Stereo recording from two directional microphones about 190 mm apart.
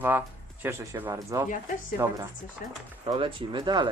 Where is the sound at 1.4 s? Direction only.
45° left (ahead or behind).